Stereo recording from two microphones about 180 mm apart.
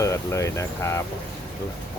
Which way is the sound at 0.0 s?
15° left (ahead or behind).